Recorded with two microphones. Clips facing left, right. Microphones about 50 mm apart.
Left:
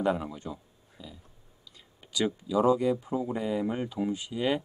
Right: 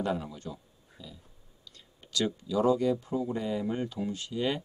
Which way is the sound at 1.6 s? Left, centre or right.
Centre.